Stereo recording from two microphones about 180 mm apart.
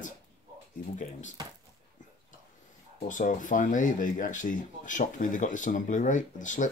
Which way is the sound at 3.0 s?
45° left (ahead or behind).